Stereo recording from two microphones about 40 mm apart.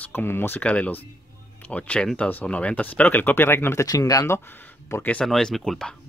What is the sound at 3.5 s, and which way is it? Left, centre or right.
Speech, left.